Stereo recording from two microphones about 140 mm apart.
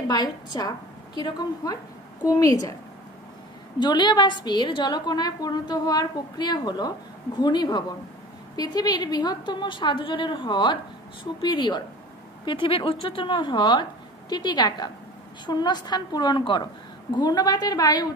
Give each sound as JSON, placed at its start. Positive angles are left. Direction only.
{"t": 0.1, "sound": "a woman's voice", "side_deg": 30}
{"t": 3.8, "sound": "a woman's voice", "side_deg": 30}